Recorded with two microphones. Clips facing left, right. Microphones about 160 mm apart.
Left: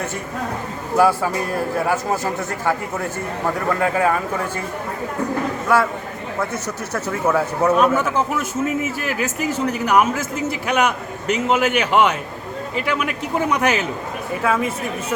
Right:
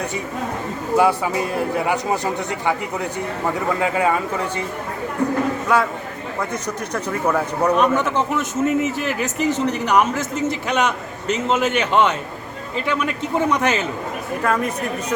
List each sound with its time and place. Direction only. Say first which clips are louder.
0.9 s speech: left 1 dB; 20° right (ahead or behind)
1.8 s a man's voice: even; centre (ahead or behind)
5.6 s a man's voice: left 3 dB; centre (ahead or behind)
6.9 s a man's voice: left 1 dB; 5° left (ahead or behind)